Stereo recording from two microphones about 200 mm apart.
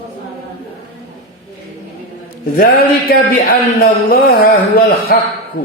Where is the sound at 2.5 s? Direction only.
50° left (ahead or behind).